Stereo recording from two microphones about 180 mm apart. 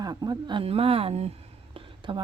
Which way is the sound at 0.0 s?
20° right (ahead or behind).